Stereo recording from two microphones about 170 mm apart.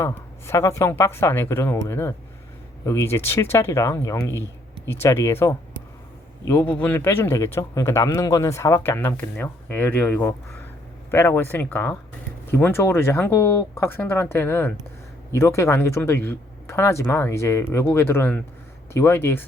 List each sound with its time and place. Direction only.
0.0 s speech: 15° left (ahead or behind)